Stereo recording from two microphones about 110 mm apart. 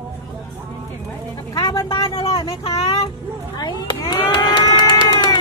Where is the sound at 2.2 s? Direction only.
30° left (ahead or behind).